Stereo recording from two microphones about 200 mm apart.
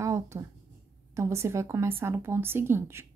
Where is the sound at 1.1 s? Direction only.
15° right (ahead or behind).